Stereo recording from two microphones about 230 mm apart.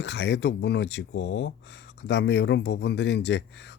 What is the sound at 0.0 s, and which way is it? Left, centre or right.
Speech, left.